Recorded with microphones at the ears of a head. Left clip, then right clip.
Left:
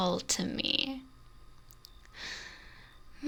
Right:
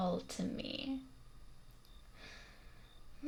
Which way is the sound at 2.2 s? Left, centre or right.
Left.